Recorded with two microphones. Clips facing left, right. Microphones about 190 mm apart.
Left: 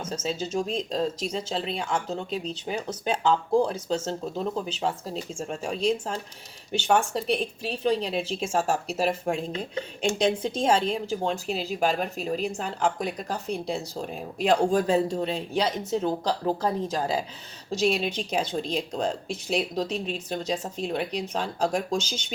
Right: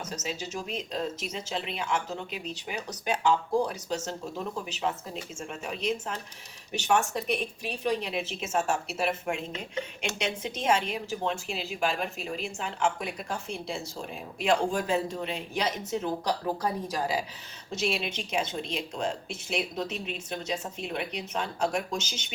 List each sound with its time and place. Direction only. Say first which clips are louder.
0.0 s speech: left 5 dB; 30° left (ahead or behind)
17.7 s speech: left 6 dB; 35° left (ahead or behind)